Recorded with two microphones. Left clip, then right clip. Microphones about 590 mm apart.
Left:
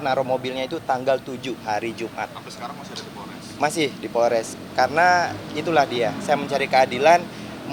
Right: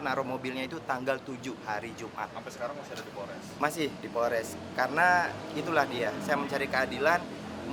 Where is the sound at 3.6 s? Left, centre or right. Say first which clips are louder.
Left 9 dB; left.